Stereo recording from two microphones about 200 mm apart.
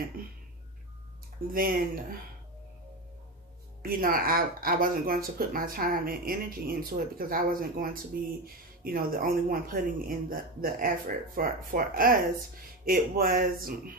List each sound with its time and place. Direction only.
1.5 s speech: 45° right (ahead or behind)
3.8 s speech: 45° right (ahead or behind)